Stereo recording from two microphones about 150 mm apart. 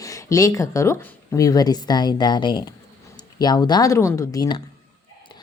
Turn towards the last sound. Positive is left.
turn(degrees=30)  # may be behind; listen again after turning